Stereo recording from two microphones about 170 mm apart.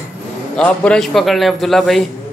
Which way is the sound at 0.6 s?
5° left (ahead or behind).